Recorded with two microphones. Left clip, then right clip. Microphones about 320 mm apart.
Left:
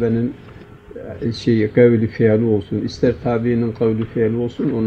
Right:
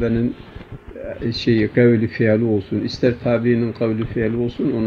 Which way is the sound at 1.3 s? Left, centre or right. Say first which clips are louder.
Even; centre.